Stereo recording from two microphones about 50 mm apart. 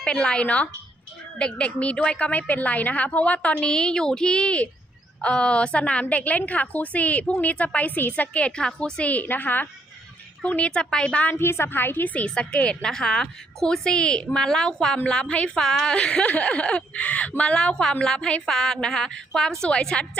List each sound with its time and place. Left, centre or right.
0.0 s a woman's voice: centre
2.5 s a woman's voice: left
9.2 s a woman's voice: left
10.5 s a woman's voice: left
11.3 s a woman's voice: left
12.2 s a woman's voice: left
16.0 s a woman's voice: left